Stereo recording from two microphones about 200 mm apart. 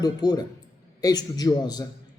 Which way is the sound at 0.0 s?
20° left (ahead or behind).